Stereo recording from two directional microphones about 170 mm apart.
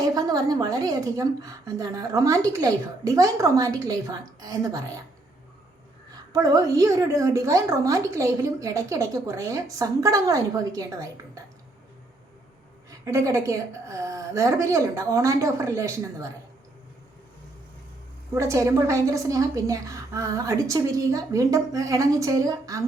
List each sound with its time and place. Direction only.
0.0 s a woman's voice: 20° right (ahead or behind)
6.3 s a woman's voice: 20° right (ahead or behind)
13.1 s a woman's voice: 20° right (ahead or behind)
18.3 s a woman's voice: 20° right (ahead or behind)